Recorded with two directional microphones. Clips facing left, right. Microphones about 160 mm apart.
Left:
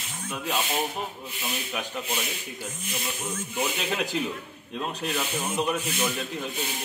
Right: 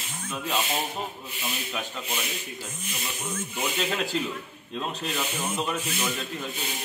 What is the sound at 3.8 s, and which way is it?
Speech, 15° left (ahead or behind).